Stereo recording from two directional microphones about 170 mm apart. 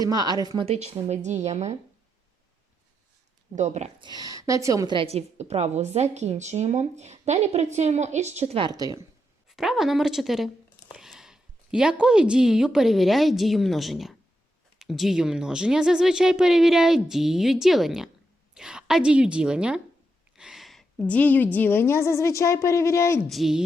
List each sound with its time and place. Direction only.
0.0 s a woman's voice: 20° right (ahead or behind)
0.6 s a woman's voice: 35° right (ahead or behind)
3.5 s speech: 40° right (ahead or behind)
4.0 s a woman's voice: 25° right (ahead or behind)
9.5 s a woman's voice: centre (ahead or behind); by 23.2 s 15° left (ahead or behind)
23.3 s speech: centre (ahead or behind)